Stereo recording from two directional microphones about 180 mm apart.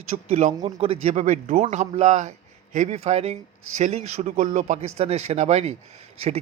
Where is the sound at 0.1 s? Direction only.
40° right (ahead or behind).